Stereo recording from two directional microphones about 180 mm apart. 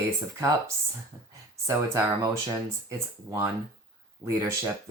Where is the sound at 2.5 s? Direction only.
15° right (ahead or behind).